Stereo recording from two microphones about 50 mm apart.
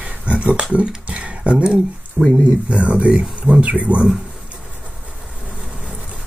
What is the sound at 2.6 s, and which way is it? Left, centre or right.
Speech, right.